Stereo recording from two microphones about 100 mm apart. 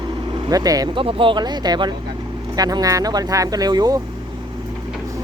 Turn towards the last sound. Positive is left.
turn(degrees=-40)  # may be behind; listen again after turning